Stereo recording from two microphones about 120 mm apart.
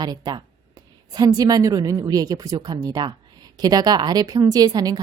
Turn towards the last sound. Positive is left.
turn(degrees=-35)  # may be behind; listen again after turning